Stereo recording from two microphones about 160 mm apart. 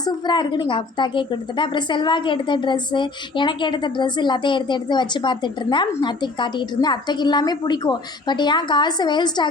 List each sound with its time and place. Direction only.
0.0 s a woman's voice: 25° left (ahead or behind)